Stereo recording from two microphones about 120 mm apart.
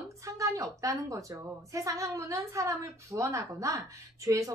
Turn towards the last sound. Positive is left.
turn(degrees=-25)  # may be behind; listen again after turning